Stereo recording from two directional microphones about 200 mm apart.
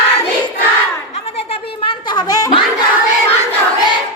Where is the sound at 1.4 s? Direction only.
25° left (ahead or behind).